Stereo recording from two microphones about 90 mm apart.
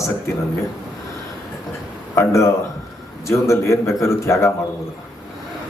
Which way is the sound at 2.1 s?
30° left (ahead or behind).